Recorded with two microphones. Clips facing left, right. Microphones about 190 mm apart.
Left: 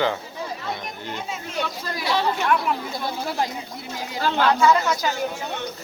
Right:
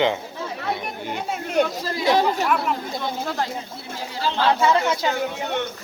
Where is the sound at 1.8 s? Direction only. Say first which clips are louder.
Right 4 dB; 30° right (ahead or behind).